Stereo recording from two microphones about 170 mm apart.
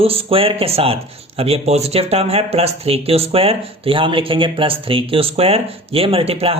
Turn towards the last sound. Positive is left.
turn(degrees=-35)  # may be behind; listen again after turning